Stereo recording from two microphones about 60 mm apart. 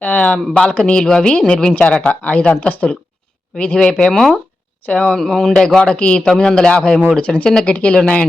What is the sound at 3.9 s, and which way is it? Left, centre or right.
Speech, centre.